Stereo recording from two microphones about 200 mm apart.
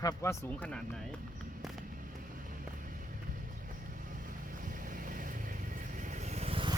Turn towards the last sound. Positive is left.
turn(degrees=-25)  # may be behind; listen again after turning